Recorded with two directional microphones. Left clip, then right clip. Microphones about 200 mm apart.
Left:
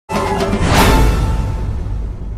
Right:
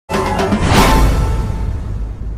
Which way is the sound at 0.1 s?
Centre (ahead or behind).